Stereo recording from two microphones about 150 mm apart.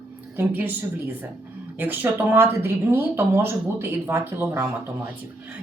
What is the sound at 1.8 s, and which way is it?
Speech, 15° right (ahead or behind).